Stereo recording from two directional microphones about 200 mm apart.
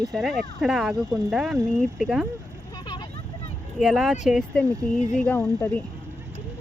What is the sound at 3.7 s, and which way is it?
Speech, centre (ahead or behind).